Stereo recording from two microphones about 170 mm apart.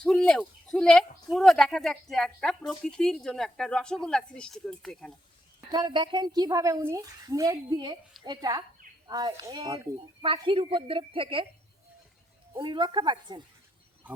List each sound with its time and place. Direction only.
0.0 s speech: 5° left (ahead or behind)
5.5 s a woman's voice: 25° right (ahead or behind)
12.5 s a woman's voice: 25° right (ahead or behind)